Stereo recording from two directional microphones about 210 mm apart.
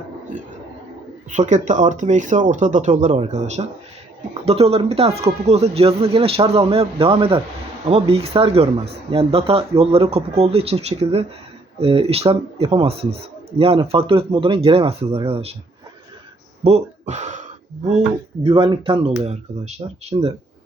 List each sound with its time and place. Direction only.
1.3 s speech: 35° right (ahead or behind)
16.6 s speech: 30° right (ahead or behind)
18.4 s speech: 25° right (ahead or behind)